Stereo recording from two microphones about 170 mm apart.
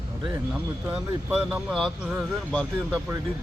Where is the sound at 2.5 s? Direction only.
5° left (ahead or behind).